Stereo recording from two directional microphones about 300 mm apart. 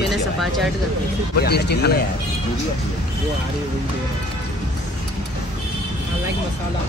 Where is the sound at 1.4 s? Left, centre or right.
Left.